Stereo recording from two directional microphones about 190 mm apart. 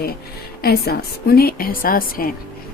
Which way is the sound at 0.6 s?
55° left (ahead or behind).